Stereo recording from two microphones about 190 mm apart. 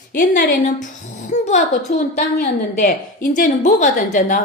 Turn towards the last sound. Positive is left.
turn(degrees=40)  # may be behind; listen again after turning